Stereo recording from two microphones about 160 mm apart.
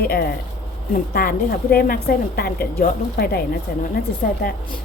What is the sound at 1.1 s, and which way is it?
A woman's voice, 70° left (ahead or behind).